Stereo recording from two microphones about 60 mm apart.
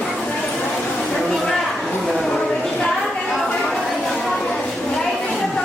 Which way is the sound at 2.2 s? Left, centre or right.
Centre.